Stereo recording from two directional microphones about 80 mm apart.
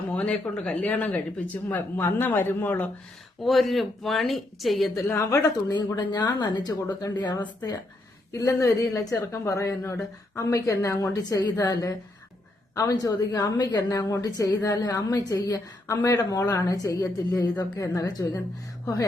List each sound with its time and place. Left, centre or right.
0.1 s speech: centre
2.0 s speech: left
3.4 s speech: centre
5.0 s speech: left
5.4 s speech: left
8.3 s speech: left
14.0 s speech: left